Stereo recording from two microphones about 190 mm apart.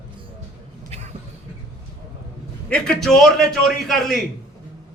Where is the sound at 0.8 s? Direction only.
35° right (ahead or behind).